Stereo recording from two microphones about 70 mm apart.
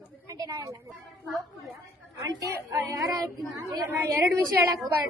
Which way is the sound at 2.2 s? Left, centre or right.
Right.